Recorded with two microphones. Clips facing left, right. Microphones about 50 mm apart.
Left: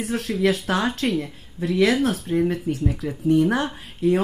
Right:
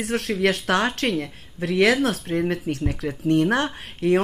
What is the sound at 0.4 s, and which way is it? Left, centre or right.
Speech, right.